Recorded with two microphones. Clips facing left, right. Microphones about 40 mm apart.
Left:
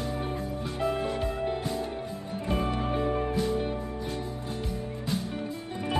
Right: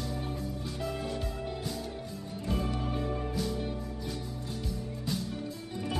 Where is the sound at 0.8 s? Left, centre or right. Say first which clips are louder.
Left 8 dB; left.